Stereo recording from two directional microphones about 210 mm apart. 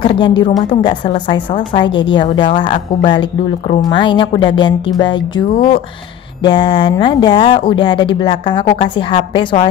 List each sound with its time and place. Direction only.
0.0 s speech: 25° left (ahead or behind)
6.4 s speech: 25° left (ahead or behind)